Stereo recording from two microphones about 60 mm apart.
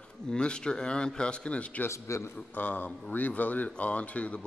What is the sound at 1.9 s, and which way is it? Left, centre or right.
Speech, left.